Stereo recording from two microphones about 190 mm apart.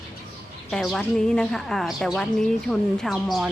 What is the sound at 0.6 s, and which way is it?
Speech, centre (ahead or behind).